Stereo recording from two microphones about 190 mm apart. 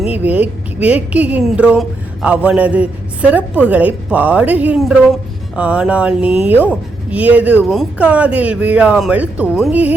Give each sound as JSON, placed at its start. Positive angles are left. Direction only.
{"t": 0.0, "sound": "a woman's voice", "side_deg": -10}